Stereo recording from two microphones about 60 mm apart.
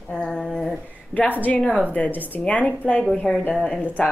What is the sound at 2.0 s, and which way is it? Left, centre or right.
Speech, left.